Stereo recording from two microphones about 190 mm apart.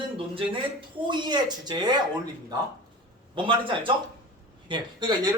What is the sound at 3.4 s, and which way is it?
Speech, 25° right (ahead or behind).